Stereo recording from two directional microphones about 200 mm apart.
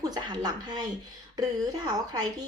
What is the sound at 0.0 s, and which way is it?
A woman's voice, 20° right (ahead or behind).